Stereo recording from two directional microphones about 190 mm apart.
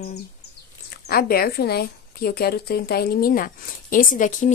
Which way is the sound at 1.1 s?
50° left (ahead or behind).